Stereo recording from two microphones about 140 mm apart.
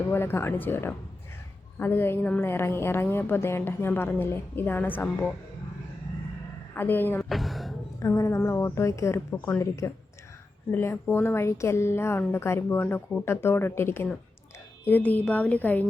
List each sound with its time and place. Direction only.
0.1 s a woman's voice: 15° left (ahead or behind)
6.7 s a woman's voice: 15° left (ahead or behind)
7.2 s music: centre (ahead or behind)
8.0 s a woman's voice: 20° left (ahead or behind)